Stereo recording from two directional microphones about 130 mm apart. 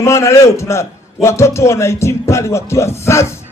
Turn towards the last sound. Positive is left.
turn(degrees=20)  # may be behind; listen again after turning